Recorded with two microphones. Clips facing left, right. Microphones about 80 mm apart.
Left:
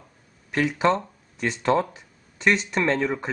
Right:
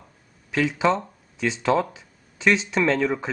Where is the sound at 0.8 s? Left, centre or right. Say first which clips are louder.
Even; centre.